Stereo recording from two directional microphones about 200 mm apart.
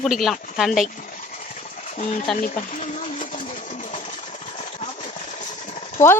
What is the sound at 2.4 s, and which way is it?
Speech, 40° left (ahead or behind).